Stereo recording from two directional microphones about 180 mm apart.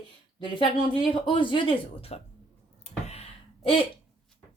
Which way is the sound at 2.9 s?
35° left (ahead or behind).